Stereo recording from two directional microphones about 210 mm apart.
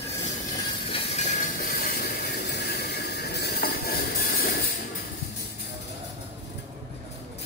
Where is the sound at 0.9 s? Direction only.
30° left (ahead or behind).